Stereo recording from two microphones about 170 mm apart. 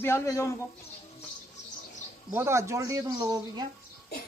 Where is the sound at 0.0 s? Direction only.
15° left (ahead or behind).